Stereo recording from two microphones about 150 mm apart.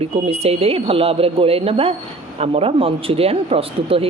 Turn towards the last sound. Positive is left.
turn(degrees=-40)  # may be behind; listen again after turning